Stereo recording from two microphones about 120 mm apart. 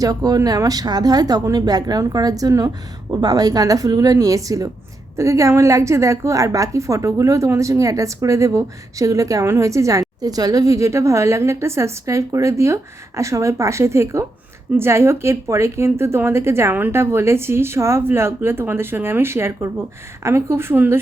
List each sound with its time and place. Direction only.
0.0 s a woman's voice: 30° right (ahead or behind)